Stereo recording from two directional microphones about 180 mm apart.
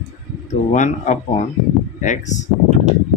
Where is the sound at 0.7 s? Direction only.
40° left (ahead or behind).